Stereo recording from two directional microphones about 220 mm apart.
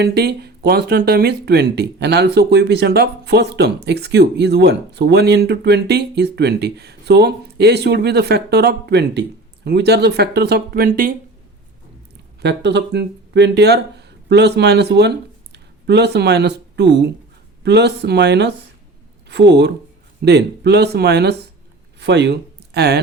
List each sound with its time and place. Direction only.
0.0 s speech: 50° right (ahead or behind)
12.4 s speech: 50° right (ahead or behind)